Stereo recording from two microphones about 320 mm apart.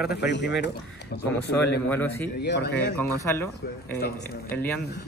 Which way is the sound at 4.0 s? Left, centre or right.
Left.